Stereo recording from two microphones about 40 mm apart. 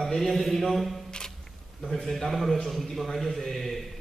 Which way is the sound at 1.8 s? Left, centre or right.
Centre.